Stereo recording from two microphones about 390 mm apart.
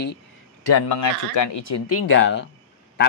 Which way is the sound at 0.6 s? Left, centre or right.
Left.